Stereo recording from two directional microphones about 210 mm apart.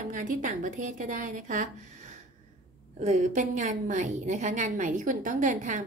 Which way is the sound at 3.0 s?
35° right (ahead or behind).